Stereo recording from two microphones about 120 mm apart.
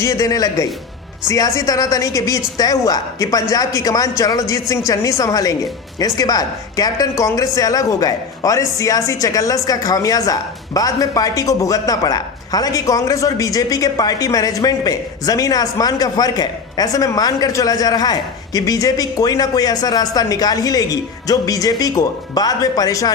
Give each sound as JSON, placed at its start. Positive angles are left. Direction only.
{"t": 0.0, "sound": "a woman's voice", "side_deg": 30}